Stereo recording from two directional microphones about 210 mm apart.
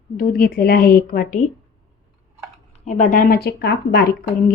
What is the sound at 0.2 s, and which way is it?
Speech, 45° left (ahead or behind).